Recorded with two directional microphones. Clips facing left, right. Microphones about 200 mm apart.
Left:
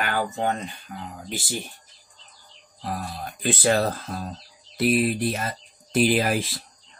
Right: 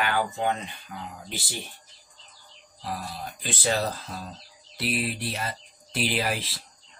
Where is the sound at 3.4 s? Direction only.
55° left (ahead or behind).